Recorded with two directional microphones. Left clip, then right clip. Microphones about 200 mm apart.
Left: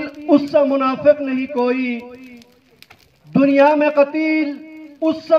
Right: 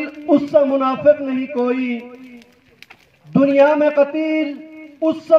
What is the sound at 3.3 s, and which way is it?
A man's voice, 50° right (ahead or behind).